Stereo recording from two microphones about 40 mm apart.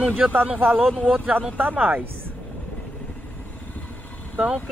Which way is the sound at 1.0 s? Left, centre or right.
Right.